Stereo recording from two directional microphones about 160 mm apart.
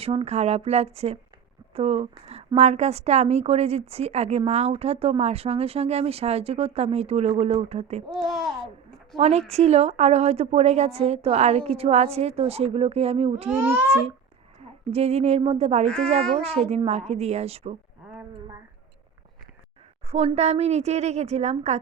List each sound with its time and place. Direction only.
0.0 s a woman's voice: 35° right (ahead or behind)
8.1 s a child's voice: centre (ahead or behind)
9.1 s a woman's voice: 40° right (ahead or behind)
13.6 s speech: 10° right (ahead or behind)
14.8 s a woman's voice: 40° right (ahead or behind)
20.1 s a woman's voice: 40° right (ahead or behind)